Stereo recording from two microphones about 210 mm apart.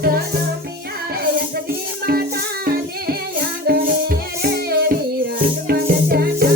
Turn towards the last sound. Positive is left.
turn(degrees=-45)  # may be behind; listen again after turning